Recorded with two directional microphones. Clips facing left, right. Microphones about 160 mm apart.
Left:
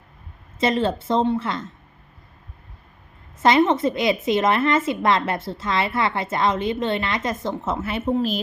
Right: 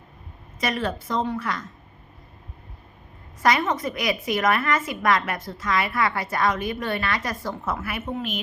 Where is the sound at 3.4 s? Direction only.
25° left (ahead or behind).